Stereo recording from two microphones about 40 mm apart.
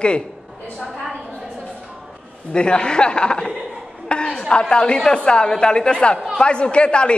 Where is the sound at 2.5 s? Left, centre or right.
Left.